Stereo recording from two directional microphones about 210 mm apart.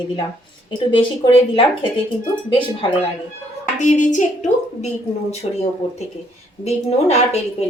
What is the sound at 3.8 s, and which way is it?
A woman's voice, 35° left (ahead or behind).